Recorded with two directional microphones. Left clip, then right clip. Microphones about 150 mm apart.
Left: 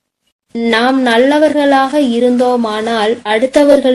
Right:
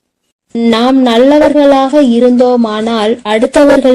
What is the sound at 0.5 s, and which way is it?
Speech, 20° right (ahead or behind).